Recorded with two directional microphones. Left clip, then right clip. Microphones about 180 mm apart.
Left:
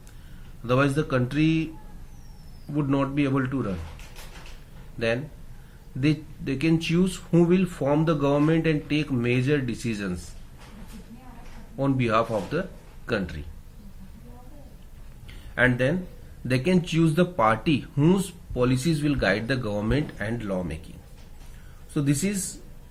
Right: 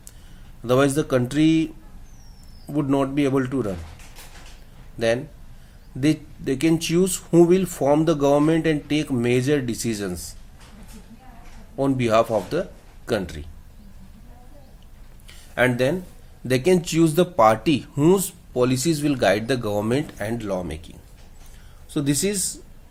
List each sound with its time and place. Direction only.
0.6 s speech: 45° right (ahead or behind)
2.7 s speech: 45° right (ahead or behind)
4.9 s speech: 45° right (ahead or behind)
11.8 s speech: 45° right (ahead or behind)
15.3 s a sound: 35° right (ahead or behind)
16.5 s speech: 40° right (ahead or behind)
21.9 s speech: 30° right (ahead or behind)